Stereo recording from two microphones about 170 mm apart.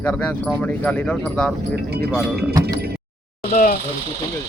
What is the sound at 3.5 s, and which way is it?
Speech, 50° left (ahead or behind).